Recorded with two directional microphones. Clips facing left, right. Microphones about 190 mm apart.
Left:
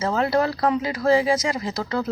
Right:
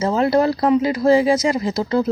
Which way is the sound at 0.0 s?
20° right (ahead or behind).